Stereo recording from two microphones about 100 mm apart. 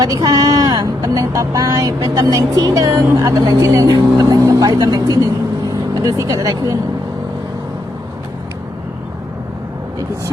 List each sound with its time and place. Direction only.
0.0 s speech: 40° right (ahead or behind)